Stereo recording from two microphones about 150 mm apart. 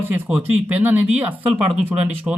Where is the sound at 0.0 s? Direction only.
10° right (ahead or behind).